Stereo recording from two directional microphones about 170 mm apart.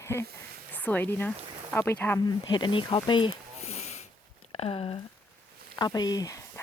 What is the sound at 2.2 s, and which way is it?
Speech, 25° left (ahead or behind).